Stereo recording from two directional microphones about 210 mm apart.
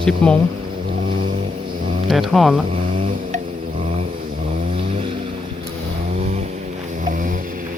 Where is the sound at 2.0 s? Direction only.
Centre (ahead or behind).